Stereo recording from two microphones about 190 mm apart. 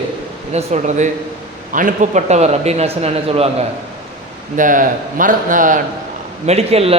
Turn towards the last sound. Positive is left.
turn(degrees=-30)  # may be behind; listen again after turning